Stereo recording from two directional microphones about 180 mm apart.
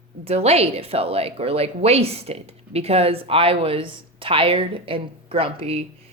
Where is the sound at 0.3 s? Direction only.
35° right (ahead or behind).